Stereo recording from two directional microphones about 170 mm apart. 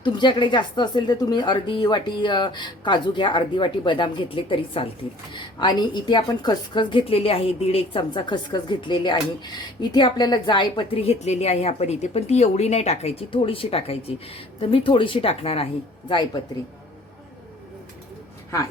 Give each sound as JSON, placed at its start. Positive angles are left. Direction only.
{"t": 0.0, "sound": "a woman's voice", "side_deg": 25}